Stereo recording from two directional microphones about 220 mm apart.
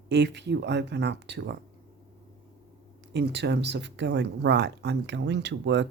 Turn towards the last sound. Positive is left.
turn(degrees=-55)  # may be behind; listen again after turning